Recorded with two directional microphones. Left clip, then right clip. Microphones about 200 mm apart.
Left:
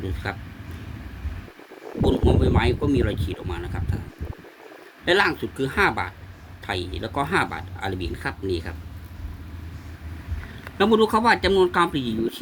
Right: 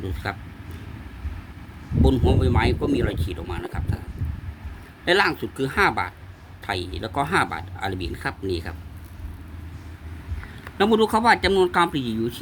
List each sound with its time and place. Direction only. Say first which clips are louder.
0.0 s speech: even; 20° right (ahead or behind)
2.0 s speech: left 1 dB; 20° right (ahead or behind)
5.0 s speech: even; 15° right (ahead or behind)
10.8 s speech: even; 15° right (ahead or behind)